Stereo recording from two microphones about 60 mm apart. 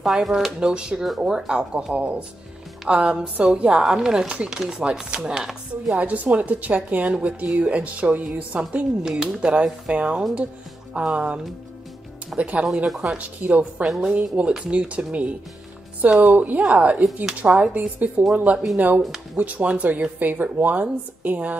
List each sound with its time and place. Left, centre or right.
0.0 s speech: centre
1.0 s speech: centre
1.3 s speech: centre
5.9 s speech: right
9.1 s speech: centre
12.8 s speech: centre
13.4 s speech: right